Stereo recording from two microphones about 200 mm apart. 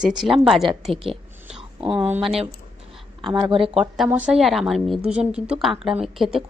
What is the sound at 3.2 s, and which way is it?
Speech, 25° right (ahead or behind).